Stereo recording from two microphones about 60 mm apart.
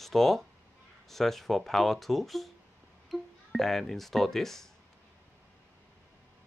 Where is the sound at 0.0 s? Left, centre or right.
Centre.